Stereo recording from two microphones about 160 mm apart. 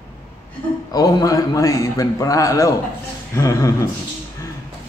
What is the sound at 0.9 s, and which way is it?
A man's voice, 20° left (ahead or behind).